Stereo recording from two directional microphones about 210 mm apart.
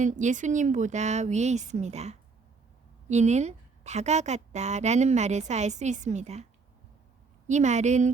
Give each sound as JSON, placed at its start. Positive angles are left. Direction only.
{"t": 0.0, "sound": "a woman's voice", "side_deg": -35}